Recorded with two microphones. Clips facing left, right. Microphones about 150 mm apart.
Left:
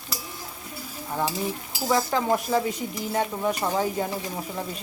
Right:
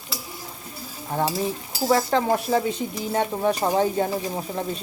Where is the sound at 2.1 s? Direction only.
30° right (ahead or behind).